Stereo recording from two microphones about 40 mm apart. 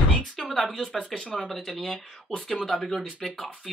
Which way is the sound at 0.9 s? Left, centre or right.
Left.